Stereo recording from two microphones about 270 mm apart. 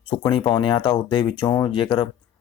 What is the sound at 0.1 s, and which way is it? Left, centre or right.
Speech, centre.